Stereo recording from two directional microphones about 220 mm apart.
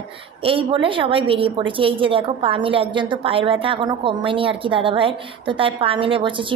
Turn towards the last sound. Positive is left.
turn(degrees=-20)  # may be behind; listen again after turning